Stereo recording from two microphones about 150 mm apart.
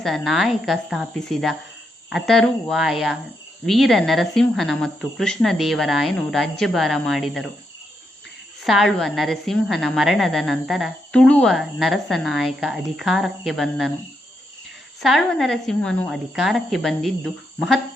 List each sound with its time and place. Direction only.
0.0 s a woman's voice: centre (ahead or behind)
8.6 s a woman's voice: centre (ahead or behind)
15.0 s a woman's voice: centre (ahead or behind)